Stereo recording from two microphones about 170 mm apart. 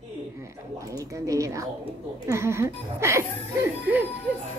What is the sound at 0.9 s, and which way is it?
A woman's voice, 20° right (ahead or behind).